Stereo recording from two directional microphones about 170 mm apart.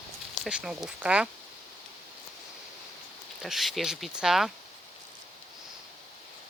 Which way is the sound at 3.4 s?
Centre (ahead or behind).